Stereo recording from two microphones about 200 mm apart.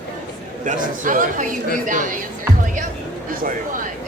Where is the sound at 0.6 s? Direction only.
40° right (ahead or behind).